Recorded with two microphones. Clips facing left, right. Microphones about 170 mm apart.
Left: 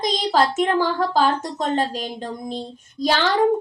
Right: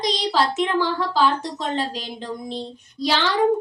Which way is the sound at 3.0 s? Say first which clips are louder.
Left 2 dB; 45° left (ahead or behind).